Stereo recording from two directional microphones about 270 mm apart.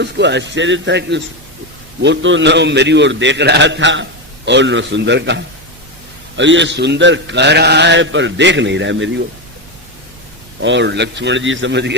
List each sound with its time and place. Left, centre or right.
0.0 s a man's voice: right
10.6 s a man's voice: right